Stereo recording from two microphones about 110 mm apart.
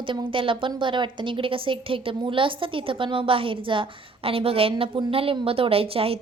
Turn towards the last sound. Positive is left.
turn(degrees=-60)  # may be behind; listen again after turning